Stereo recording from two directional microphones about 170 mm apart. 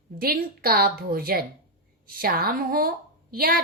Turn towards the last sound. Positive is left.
turn(degrees=-60)  # may be behind; listen again after turning